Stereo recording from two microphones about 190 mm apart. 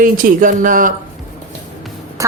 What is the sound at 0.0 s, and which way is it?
Speech, 45° right (ahead or behind).